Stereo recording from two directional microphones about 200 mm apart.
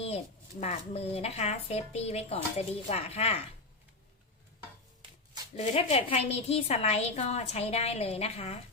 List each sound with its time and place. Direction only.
0.6 s a woman's voice: 30° left (ahead or behind)
5.7 s a woman's voice: 30° left (ahead or behind)